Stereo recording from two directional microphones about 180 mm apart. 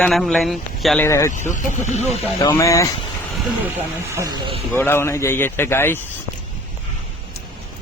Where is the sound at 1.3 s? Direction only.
45° left (ahead or behind).